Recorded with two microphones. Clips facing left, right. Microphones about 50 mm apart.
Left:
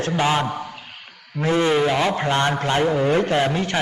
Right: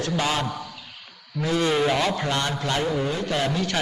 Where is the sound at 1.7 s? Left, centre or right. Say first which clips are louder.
Left 3 dB; centre.